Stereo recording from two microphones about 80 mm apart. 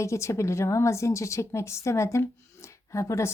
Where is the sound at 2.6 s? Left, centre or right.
Left.